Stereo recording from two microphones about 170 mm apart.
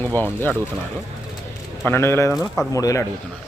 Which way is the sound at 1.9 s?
15° left (ahead or behind).